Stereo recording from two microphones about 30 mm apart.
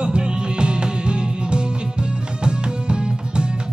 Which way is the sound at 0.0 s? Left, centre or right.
Right.